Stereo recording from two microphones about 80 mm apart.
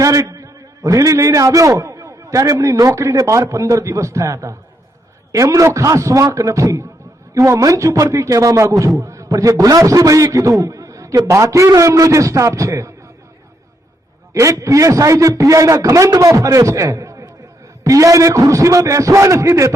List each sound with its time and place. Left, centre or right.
0.0 s a man's voice: right
10.6 s a sound: right
11.3 s a man's voice: right
14.3 s a man's voice: right